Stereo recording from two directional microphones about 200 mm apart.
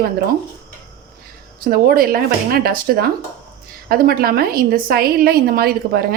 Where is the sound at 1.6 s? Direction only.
45° right (ahead or behind).